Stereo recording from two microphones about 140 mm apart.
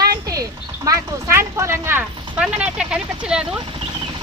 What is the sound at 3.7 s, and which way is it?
Vehicle, 35° right (ahead or behind).